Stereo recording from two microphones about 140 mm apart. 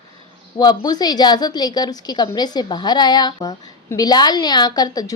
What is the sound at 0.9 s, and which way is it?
A woman's voice, 30° left (ahead or behind).